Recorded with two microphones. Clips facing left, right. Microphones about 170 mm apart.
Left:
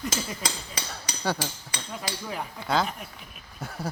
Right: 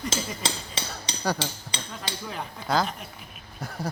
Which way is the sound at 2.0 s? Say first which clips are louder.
Left 1 dB; 5° left (ahead or behind).